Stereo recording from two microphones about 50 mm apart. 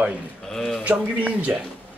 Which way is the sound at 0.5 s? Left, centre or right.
Centre.